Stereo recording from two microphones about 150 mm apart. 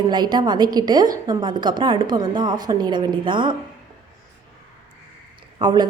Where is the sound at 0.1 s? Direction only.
30° right (ahead or behind).